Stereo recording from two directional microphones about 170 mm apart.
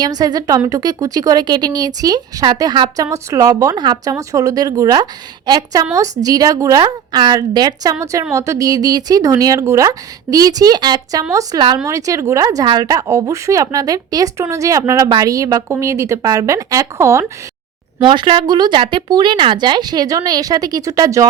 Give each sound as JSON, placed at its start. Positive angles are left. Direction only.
{"t": 0.0, "sound": "a woman's voice", "side_deg": -25}
{"t": 18.0, "sound": "a woman's voice", "side_deg": -30}